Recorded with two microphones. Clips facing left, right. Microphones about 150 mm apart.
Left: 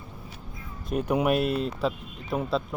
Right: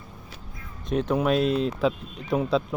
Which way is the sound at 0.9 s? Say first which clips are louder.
Right 1 dB; 10° left (ahead or behind).